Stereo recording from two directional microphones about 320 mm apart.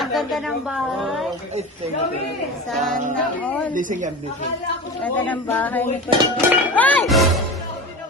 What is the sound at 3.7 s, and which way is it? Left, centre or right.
Speech, right.